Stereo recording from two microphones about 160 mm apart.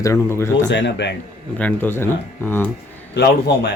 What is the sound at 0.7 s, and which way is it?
Speech, 90° left.